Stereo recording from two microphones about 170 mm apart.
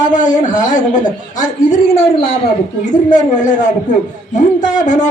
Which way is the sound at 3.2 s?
45° left (ahead or behind).